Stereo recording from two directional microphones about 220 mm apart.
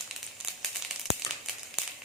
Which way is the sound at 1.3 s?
15° left (ahead or behind).